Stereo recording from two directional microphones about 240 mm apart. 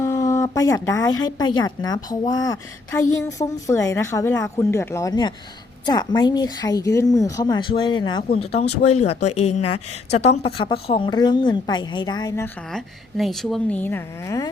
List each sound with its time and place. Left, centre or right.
0.0 s a woman's voice: centre
12.7 s a woman's voice: centre